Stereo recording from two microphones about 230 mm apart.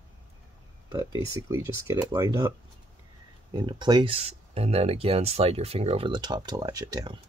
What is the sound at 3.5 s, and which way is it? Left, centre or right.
Speech, centre.